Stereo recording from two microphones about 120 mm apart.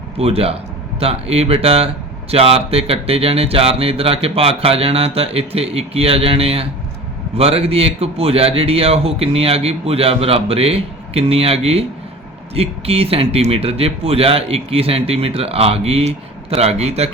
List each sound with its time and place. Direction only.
0.2 s speech: 55° right (ahead or behind)